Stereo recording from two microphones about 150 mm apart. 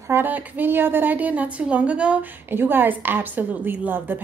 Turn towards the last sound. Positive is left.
turn(degrees=-15)  # may be behind; listen again after turning